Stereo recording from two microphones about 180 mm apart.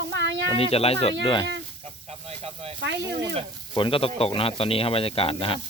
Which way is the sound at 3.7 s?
30° left (ahead or behind).